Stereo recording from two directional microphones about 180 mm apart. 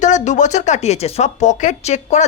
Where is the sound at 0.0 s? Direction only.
40° left (ahead or behind).